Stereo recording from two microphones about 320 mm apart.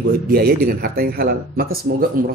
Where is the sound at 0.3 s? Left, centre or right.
Right.